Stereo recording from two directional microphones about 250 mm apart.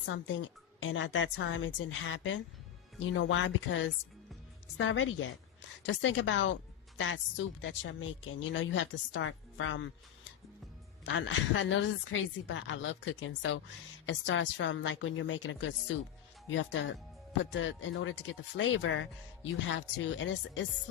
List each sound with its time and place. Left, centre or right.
0.0 s a woman's voice: left
11.0 s a woman's voice: left